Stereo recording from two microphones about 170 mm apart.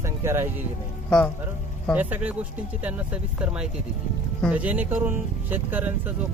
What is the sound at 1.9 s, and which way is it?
Speech, 10° right (ahead or behind).